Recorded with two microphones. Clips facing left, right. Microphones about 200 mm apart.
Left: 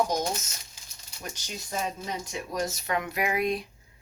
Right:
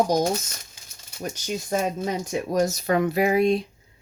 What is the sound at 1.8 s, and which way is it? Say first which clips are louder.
Speech: right 7 dB; 50° right (ahead or behind).